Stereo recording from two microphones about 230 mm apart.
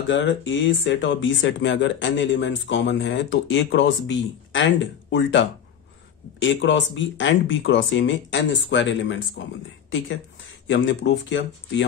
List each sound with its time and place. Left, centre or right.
0.5 s speech: left
10.7 s speech: left